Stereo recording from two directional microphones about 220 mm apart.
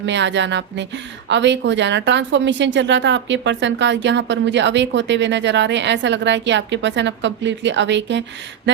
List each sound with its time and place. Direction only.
0.0 s a woman's voice: 55° right (ahead or behind)